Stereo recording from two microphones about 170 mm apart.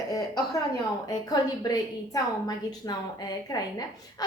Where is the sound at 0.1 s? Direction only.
20° left (ahead or behind).